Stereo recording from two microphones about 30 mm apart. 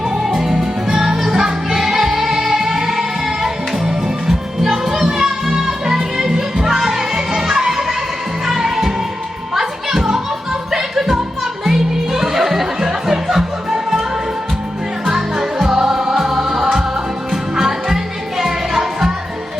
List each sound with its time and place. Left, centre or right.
0.5 s music: right
1.1 s music: centre
15.0 s music: centre